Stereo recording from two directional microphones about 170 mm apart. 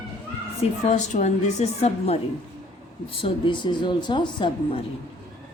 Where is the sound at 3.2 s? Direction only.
30° left (ahead or behind).